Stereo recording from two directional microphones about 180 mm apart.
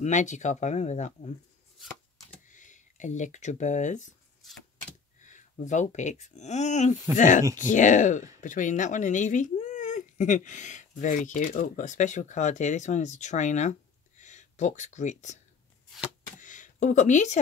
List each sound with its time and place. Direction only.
0.0 s speech: 40° left (ahead or behind)
2.4 s speech: 45° left (ahead or behind)
4.5 s keys jangling: 5° left (ahead or behind)
5.2 s speech: 45° left (ahead or behind)
16.3 s a sound: 45° left (ahead or behind)